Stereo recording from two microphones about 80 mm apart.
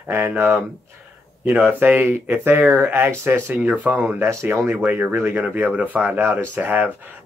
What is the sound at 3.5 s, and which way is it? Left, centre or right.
Speech, centre.